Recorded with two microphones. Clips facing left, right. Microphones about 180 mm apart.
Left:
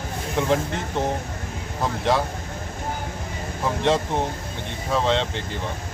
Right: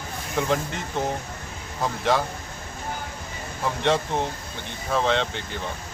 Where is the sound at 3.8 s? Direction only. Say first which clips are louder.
Left 1 dB; centre (ahead or behind).